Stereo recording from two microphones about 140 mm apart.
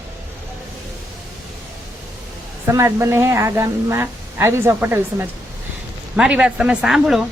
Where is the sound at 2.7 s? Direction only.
20° right (ahead or behind).